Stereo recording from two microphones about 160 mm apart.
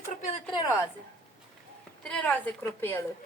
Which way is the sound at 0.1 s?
50° left (ahead or behind).